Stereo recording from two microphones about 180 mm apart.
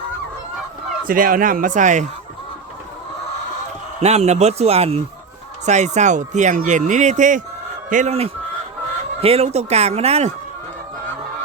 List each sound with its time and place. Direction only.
1.0 s speech: 50° right (ahead or behind)
4.0 s speech: 35° right (ahead or behind)